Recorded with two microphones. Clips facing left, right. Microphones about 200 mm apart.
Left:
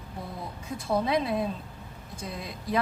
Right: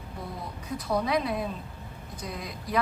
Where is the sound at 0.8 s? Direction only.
25° left (ahead or behind).